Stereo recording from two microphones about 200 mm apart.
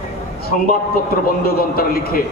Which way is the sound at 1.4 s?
50° left (ahead or behind).